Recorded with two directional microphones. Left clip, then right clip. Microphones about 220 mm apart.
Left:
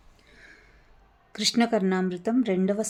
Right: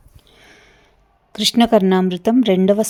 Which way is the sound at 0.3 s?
35° right (ahead or behind).